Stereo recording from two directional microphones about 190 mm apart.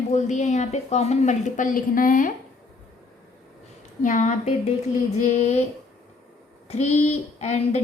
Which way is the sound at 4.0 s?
40° left (ahead or behind).